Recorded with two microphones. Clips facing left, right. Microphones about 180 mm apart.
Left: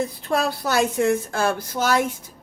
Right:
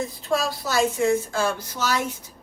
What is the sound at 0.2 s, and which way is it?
Speech, 60° left (ahead or behind).